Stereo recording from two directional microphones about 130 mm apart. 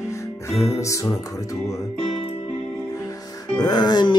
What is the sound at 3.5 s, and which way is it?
Music, 30° left (ahead or behind).